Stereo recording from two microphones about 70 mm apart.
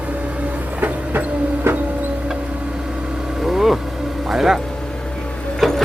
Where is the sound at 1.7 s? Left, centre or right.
Right.